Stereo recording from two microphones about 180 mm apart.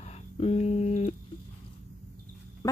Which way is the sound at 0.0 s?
35° left (ahead or behind).